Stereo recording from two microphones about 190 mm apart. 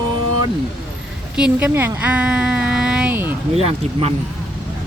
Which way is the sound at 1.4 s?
10° right (ahead or behind).